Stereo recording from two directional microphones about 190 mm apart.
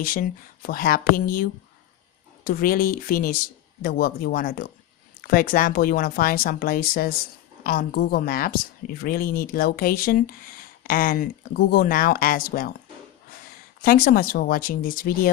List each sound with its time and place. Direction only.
0.0 s speech: 50° left (ahead or behind)
13.8 s speech: 50° left (ahead or behind)